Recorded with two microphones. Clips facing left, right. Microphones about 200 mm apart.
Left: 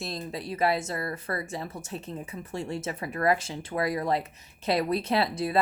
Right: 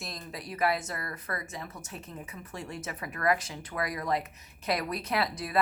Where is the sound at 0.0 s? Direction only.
30° left (ahead or behind).